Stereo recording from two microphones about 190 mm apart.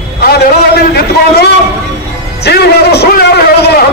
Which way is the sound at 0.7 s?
55° left (ahead or behind).